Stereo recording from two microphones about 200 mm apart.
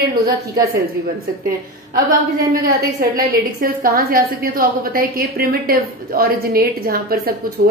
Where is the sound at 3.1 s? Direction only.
45° right (ahead or behind).